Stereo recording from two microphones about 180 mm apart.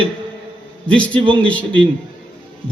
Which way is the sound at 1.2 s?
30° right (ahead or behind).